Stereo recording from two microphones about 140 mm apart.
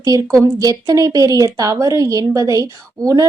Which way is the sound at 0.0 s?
20° right (ahead or behind).